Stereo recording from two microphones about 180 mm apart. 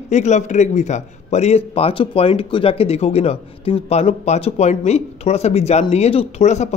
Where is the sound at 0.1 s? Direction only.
40° left (ahead or behind).